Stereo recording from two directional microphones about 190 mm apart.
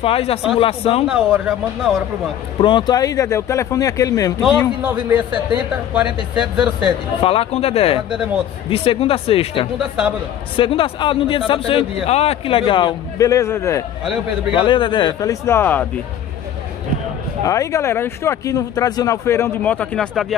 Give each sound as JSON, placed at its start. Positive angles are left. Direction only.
{"t": 0.0, "sound": "speech", "side_deg": 30}
{"t": 1.0, "sound": "speech", "side_deg": -5}
{"t": 2.6, "sound": "speech", "side_deg": 25}
{"t": 4.4, "sound": "speech", "side_deg": -5}
{"t": 7.2, "sound": "a man's voice", "side_deg": 30}
{"t": 14.5, "sound": "a man's voice", "side_deg": 25}
{"t": 17.5, "sound": "speech", "side_deg": 15}